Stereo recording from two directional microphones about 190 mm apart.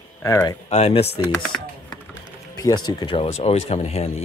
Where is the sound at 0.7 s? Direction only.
35° left (ahead or behind).